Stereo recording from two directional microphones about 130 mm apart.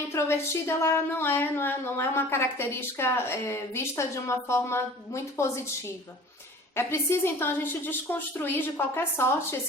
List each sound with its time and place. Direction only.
0.1 s a woman's voice: 20° left (ahead or behind)
6.7 s a woman's voice: 20° left (ahead or behind)